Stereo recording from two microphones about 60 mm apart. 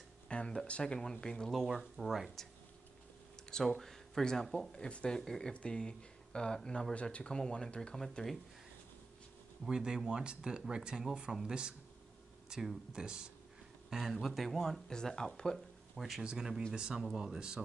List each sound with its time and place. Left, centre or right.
0.3 s a sound: centre
0.7 s speech: centre
2.0 s speech: centre
3.4 s speech: centre
9.7 s speech: centre
16.1 s speech: centre